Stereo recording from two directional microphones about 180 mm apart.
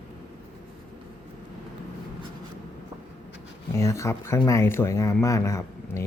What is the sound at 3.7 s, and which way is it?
Speech, 15° left (ahead or behind).